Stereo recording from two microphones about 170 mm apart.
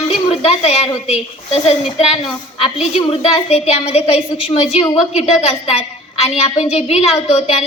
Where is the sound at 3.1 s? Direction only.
40° left (ahead or behind).